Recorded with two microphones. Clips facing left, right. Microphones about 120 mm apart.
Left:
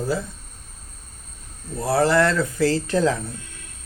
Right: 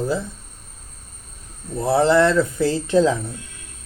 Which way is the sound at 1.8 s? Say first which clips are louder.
Right 3 dB; 25° right (ahead or behind).